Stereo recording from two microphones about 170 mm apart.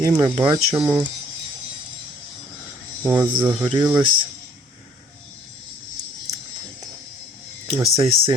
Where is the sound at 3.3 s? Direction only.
25° right (ahead or behind).